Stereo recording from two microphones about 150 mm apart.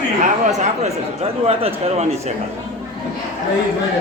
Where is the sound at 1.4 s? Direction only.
45° right (ahead or behind).